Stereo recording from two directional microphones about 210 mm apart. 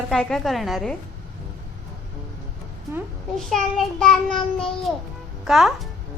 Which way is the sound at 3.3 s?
Centre (ahead or behind).